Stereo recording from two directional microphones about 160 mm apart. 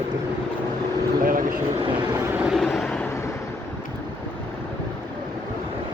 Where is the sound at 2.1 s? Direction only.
10° right (ahead or behind).